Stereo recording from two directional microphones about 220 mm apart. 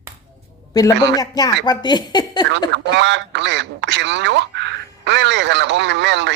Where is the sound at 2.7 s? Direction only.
55° right (ahead or behind).